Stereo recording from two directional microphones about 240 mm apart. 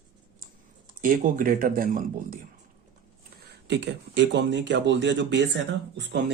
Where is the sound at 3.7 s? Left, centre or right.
Right.